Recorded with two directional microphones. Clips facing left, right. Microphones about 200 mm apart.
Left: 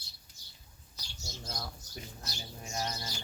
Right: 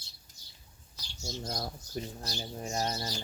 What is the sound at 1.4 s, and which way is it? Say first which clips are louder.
Speech: right 2 dB; 40° right (ahead or behind).